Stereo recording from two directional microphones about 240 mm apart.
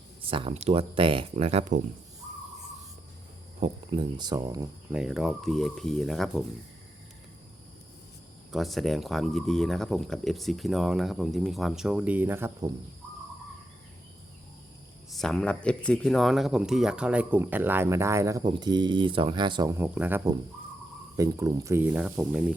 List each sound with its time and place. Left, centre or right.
0.3 s speech: right
3.6 s speech: centre
4.9 s speech: centre
8.5 s speech: centre
15.1 s speech: centre